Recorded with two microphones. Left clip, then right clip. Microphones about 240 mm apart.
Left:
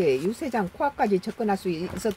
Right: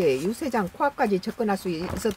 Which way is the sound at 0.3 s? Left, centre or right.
Centre.